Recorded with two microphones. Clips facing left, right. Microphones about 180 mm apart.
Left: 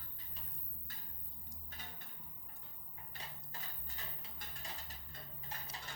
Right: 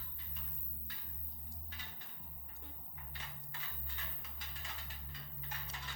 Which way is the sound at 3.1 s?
40° left (ahead or behind).